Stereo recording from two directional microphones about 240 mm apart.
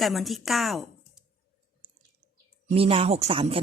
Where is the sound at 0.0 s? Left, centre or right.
Centre.